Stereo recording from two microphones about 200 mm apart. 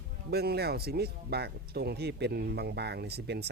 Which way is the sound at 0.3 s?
50° right (ahead or behind).